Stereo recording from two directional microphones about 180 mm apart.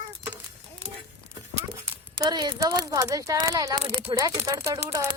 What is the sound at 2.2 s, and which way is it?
A woman's voice, 20° right (ahead or behind).